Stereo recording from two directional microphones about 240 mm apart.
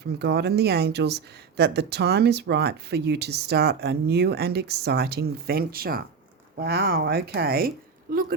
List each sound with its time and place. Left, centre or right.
0.2 s speech: right